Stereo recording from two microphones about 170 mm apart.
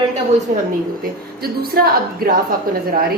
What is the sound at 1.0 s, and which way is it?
A woman's voice, 65° right (ahead or behind).